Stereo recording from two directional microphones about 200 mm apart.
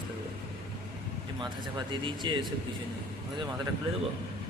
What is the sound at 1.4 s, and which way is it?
Speech, 25° right (ahead or behind).